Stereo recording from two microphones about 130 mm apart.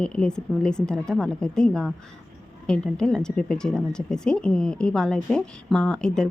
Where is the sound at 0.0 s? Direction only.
5° left (ahead or behind).